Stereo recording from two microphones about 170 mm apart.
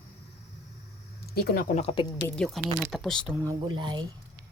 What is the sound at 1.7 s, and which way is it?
Speech, 35° left (ahead or behind).